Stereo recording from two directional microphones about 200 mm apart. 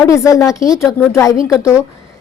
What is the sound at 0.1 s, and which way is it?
A woman's voice, 15° left (ahead or behind).